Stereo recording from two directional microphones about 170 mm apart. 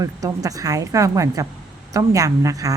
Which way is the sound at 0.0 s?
20° right (ahead or behind).